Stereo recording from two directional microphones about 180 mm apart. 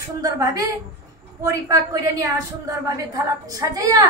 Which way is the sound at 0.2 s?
20° right (ahead or behind).